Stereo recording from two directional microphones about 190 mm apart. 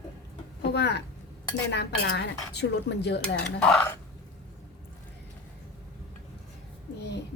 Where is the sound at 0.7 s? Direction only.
65° left (ahead or behind).